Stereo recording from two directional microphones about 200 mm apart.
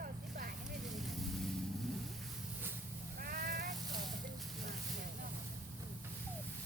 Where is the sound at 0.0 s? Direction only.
45° right (ahead or behind).